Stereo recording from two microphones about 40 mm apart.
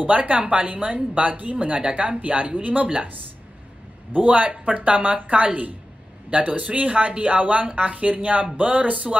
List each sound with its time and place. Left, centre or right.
0.0 s speech: right
4.1 s speech: right